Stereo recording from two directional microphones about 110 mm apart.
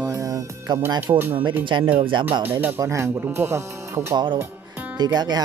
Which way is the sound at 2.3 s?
15° right (ahead or behind).